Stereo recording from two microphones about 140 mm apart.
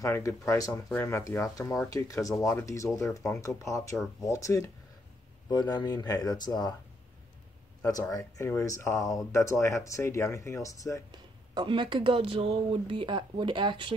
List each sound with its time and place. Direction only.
0.0 s speech: 20° left (ahead or behind)
8.1 s speech: 20° left (ahead or behind)
11.1 s speech: 35° right (ahead or behind)